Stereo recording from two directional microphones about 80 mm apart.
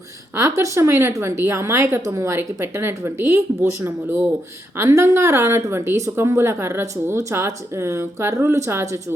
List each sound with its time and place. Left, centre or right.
0.3 s a woman's voice: right